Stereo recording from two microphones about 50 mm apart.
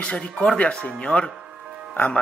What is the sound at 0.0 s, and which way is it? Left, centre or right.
Speech, left.